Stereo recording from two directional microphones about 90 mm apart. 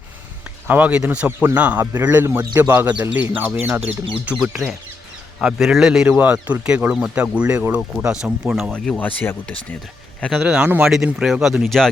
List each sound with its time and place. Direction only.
0.7 s speech: 15° right (ahead or behind)
6.1 s speech: 15° right (ahead or behind)
8.7 s speech: 10° left (ahead or behind)
10.2 s speech: 5° right (ahead or behind)